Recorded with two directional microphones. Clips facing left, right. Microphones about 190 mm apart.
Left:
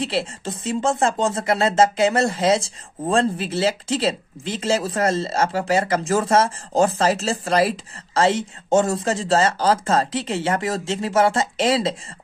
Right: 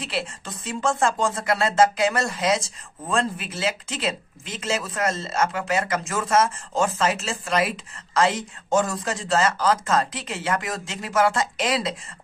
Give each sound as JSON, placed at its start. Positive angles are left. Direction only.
{"t": 0.0, "sound": "speech", "side_deg": 30}